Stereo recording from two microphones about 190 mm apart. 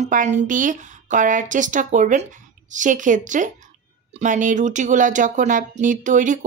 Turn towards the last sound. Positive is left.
turn(degrees=-40)  # may be behind; listen again after turning